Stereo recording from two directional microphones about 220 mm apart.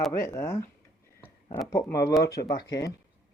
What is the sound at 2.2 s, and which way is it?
Speech, 45° left (ahead or behind).